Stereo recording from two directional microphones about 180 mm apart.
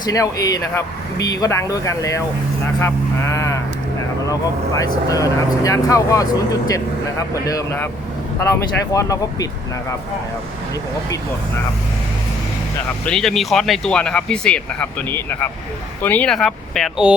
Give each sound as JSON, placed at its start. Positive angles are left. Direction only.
{"t": 0.0, "sound": "speech", "side_deg": 20}
{"t": 13.1, "sound": "speech", "side_deg": 0}